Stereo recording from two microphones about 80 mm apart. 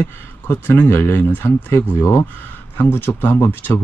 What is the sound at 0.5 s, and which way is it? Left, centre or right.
Speech, left.